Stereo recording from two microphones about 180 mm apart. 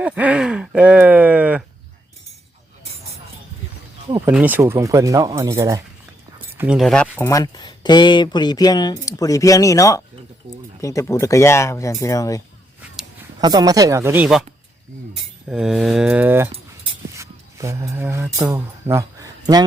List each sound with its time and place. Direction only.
0.0 s speech: 10° right (ahead or behind)
4.3 s speech: 10° right (ahead or behind)
6.6 s a sound: 5° right (ahead or behind)
7.3 s speech: 20° left (ahead or behind)
13.4 s speech: 20° right (ahead or behind); by 14.4 s 5° right (ahead or behind)
15.4 s a sound: 5° right (ahead or behind)
17.2 s speech: 15° right (ahead or behind)